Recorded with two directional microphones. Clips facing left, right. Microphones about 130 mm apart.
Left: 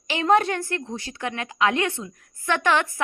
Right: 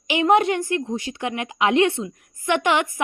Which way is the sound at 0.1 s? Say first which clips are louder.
Right 3 dB; 15° right (ahead or behind).